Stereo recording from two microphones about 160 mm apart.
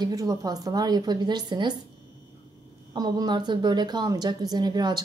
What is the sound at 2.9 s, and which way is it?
A woman's voice, 25° right (ahead or behind).